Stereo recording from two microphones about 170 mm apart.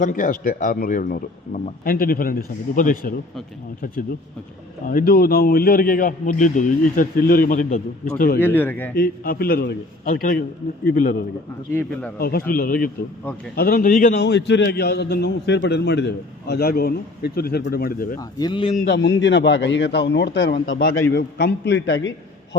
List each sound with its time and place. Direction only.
0.0 s speech: 50° left (ahead or behind)
4.9 s speech: 55° left (ahead or behind)
8.4 s speech: 10° left (ahead or behind)
9.0 s a man's voice: 60° left (ahead or behind)
11.7 s speech: 10° left (ahead or behind)
12.2 s speech: 60° left (ahead or behind)
14.2 s a man's voice: 85° left; by 18.2 s 60° left (ahead or behind)
18.2 s speech: 20° left (ahead or behind)
18.9 s a man's voice: 90° left